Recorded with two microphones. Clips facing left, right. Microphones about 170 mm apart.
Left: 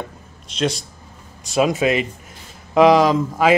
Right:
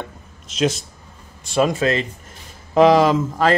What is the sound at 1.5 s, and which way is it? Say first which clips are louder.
A man's voice: left 1 dB; 5° left (ahead or behind).